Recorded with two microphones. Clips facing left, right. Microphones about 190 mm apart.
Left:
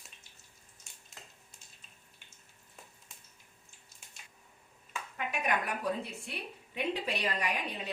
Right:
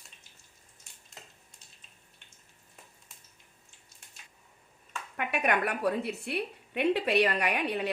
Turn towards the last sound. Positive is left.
turn(degrees=-65)  # may be behind; listen again after turning